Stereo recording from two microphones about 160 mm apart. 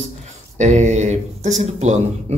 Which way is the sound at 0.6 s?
50° right (ahead or behind).